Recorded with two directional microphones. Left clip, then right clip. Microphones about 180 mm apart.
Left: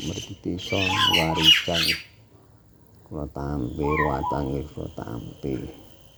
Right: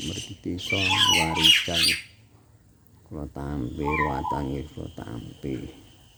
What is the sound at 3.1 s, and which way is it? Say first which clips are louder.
Speech: left 3 dB; 10° right (ahead or behind).